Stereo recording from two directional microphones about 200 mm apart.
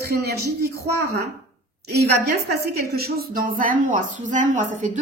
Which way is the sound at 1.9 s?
55° right (ahead or behind).